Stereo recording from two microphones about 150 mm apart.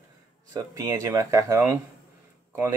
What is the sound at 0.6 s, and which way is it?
Speech, 20° right (ahead or behind).